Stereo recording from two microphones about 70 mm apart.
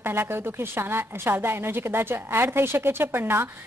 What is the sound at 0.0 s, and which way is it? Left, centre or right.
A woman's voice, right.